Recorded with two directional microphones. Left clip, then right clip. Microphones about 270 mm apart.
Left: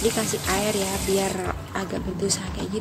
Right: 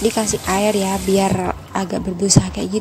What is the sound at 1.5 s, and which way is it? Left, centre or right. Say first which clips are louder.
Speech: right 7 dB; right.